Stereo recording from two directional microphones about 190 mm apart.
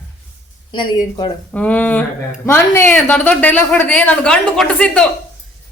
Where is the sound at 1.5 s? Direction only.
5° left (ahead or behind).